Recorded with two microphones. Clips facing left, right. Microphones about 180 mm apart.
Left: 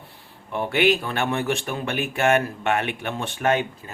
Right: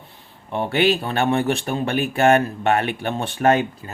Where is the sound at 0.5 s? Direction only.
30° right (ahead or behind).